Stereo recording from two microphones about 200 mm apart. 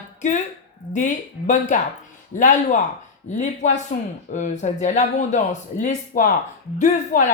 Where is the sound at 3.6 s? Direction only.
35° left (ahead or behind).